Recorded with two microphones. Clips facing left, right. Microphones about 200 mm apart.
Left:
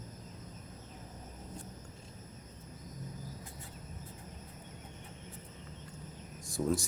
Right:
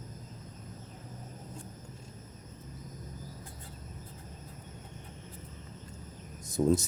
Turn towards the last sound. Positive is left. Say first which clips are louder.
# right 6 dB
turn(degrees=-20)  # may be behind; listen again after turning